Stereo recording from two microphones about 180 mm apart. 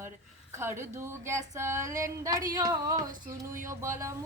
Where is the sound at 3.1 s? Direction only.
50° right (ahead or behind).